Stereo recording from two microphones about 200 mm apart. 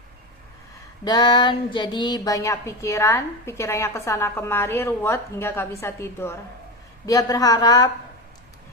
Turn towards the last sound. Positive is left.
turn(degrees=20)  # may be behind; listen again after turning